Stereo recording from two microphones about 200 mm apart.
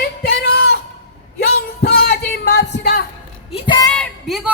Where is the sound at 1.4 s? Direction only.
50° left (ahead or behind).